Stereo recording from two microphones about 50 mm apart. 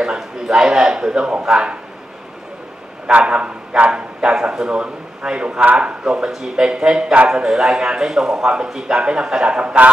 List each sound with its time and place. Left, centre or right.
0.0 s a man's voice: centre
3.1 s a man's voice: right